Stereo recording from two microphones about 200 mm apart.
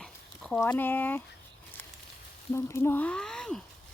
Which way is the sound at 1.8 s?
10° left (ahead or behind).